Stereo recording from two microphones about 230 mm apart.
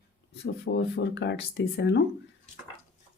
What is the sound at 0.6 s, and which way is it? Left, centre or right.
Speech, left.